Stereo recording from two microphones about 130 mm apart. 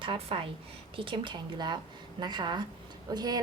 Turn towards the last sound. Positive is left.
turn(degrees=-30)  # may be behind; listen again after turning